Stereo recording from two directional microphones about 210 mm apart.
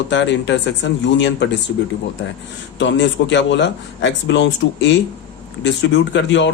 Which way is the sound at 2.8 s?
60° left (ahead or behind).